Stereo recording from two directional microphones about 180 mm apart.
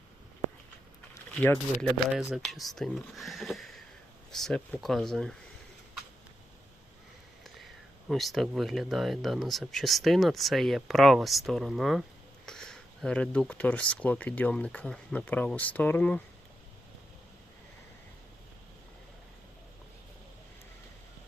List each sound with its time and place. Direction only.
1.3 s speech: 5° left (ahead or behind)
7.4 s speech: centre (ahead or behind)